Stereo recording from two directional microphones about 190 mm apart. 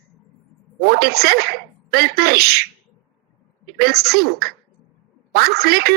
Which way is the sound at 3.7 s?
55° right (ahead or behind).